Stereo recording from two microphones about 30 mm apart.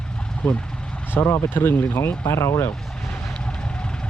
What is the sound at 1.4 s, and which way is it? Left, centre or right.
Speech, left.